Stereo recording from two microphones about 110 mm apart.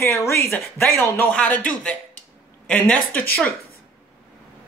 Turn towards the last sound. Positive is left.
turn(degrees=15)  # may be behind; listen again after turning